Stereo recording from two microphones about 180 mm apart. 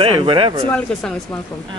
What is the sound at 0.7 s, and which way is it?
Speech, 5° left (ahead or behind).